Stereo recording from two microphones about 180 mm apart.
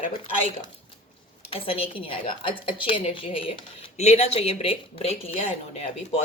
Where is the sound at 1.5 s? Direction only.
30° left (ahead or behind).